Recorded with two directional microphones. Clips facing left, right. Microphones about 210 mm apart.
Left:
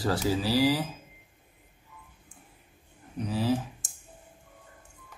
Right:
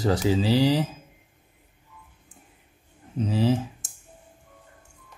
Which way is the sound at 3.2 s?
25° right (ahead or behind).